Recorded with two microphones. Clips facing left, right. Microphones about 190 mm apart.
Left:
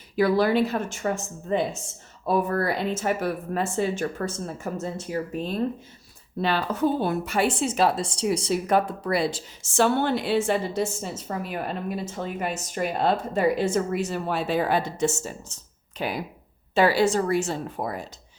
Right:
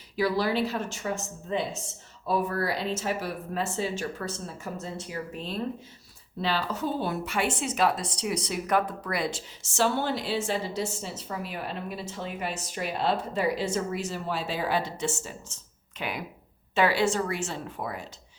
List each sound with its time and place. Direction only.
0.2 s a woman's voice: 55° left (ahead or behind); by 9.4 s 30° left (ahead or behind)
9.6 s a woman's voice: 55° left (ahead or behind); by 18.1 s 40° left (ahead or behind)